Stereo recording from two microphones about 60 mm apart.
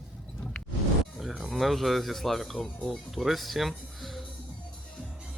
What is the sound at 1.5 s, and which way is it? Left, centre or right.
Speech, centre.